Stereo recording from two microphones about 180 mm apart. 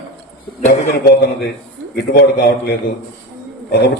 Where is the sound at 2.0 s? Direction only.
70° left (ahead or behind).